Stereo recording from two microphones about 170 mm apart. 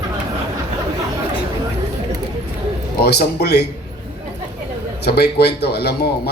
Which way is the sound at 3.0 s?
70° left (ahead or behind).